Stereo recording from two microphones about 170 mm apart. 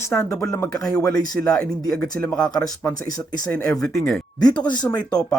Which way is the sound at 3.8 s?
Centre (ahead or behind).